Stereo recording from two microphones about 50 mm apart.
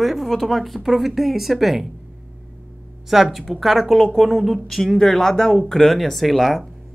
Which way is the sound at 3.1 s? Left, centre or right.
Centre.